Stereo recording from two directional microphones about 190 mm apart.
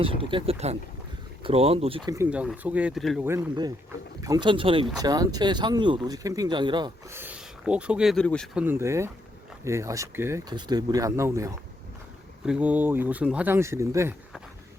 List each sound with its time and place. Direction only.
0.0 s speech: 30° right (ahead or behind)
2.0 s speech: 10° right (ahead or behind)
3.2 s speech: 20° right (ahead or behind)
7.2 s speech: 5° right (ahead or behind)
8.5 s speech: 10° right (ahead or behind)